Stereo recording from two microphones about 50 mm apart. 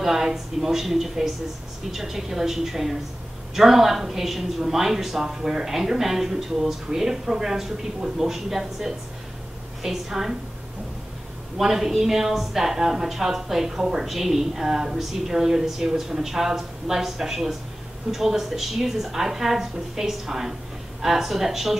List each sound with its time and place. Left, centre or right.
0.0 s a woman's voice: centre
11.5 s a woman's voice: centre